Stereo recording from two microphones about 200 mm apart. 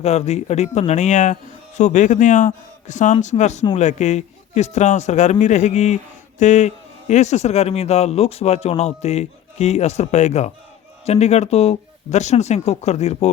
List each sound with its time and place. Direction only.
0.0 s a man's voice: 35° left (ahead or behind)